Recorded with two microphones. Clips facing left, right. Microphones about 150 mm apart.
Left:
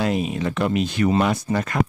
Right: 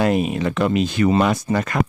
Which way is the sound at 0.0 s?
60° right (ahead or behind).